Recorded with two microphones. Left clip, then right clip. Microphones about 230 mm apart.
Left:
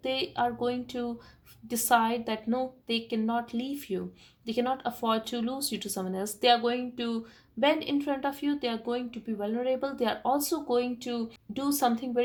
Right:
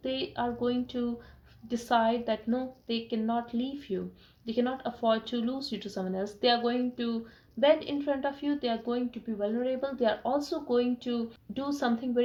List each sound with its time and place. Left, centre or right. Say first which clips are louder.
0.0 s speech: left 3 dB; left